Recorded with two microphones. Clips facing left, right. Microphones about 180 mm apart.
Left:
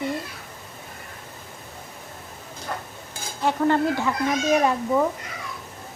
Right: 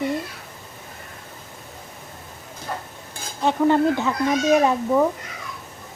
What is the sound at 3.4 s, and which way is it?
Cutlery, 20° right (ahead or behind).